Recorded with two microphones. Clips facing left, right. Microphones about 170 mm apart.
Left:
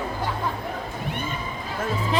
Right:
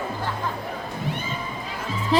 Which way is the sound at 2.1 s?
35° right (ahead or behind).